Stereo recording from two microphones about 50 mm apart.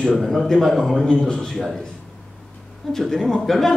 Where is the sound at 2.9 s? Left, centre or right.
Centre.